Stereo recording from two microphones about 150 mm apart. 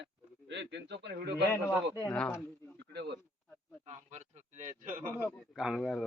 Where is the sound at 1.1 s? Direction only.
90° right.